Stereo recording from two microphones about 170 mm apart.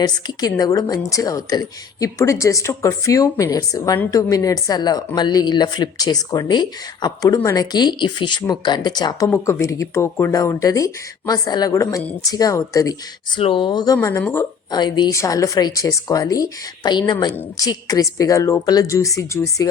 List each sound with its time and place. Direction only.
0.0 s a woman's voice: 25° left (ahead or behind)
13.4 s a woman's voice: 30° left (ahead or behind); by 14.4 s 15° left (ahead or behind)
14.7 s a woman's voice: 25° left (ahead or behind)